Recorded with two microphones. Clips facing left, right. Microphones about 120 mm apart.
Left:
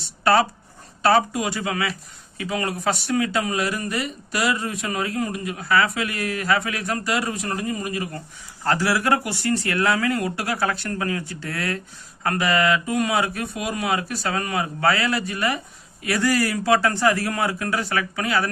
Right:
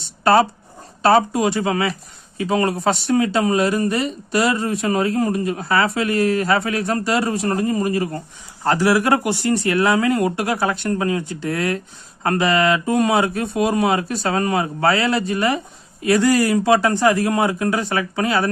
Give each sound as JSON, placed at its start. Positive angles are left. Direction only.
{"t": 1.0, "sound": "speech", "side_deg": -30}
{"t": 8.6, "sound": "speech", "side_deg": -20}